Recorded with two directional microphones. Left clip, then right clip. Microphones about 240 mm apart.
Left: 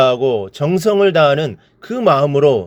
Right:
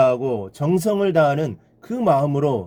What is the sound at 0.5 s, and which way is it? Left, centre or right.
A man's voice, centre.